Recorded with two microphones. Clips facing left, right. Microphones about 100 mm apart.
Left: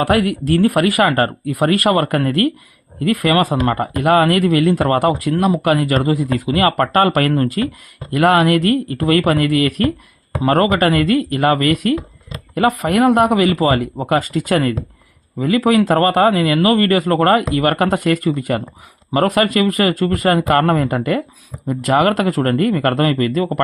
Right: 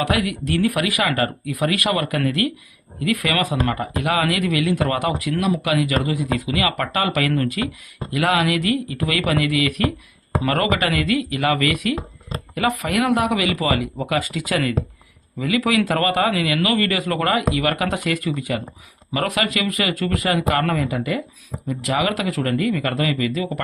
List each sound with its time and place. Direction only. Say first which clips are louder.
0.0 s speech: left 6 dB; 45° left (ahead or behind)
7.3 s speech: left 5 dB; 35° left (ahead or behind)
8.1 s speech: left 7 dB; 50° left (ahead or behind)
19.1 s speech: left 7 dB; 40° left (ahead or behind)
22.3 s speech: left 6 dB; 35° left (ahead or behind)
22.5 s speech: left 6 dB; 50° left (ahead or behind)